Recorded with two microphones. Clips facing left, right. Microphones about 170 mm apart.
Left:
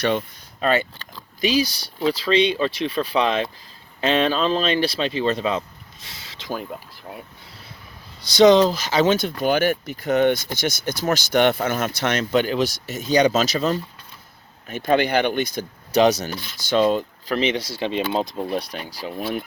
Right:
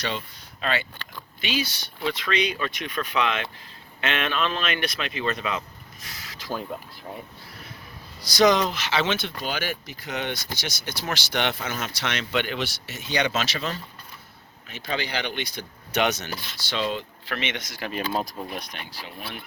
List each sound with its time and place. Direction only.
0.6 s speech: 45° left (ahead or behind); by 6.5 s 25° left (ahead or behind)
6.5 s speech: 5° left (ahead or behind)
8.2 s speech: 25° left (ahead or behind)
14.7 s speech: 50° left (ahead or behind); by 16.3 s 35° left (ahead or behind)
16.6 s speech: 45° left (ahead or behind)